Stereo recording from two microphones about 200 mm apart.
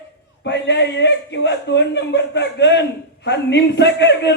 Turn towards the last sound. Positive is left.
turn(degrees=60)  # may be behind; listen again after turning